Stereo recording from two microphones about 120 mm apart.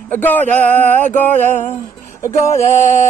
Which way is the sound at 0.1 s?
15° left (ahead or behind).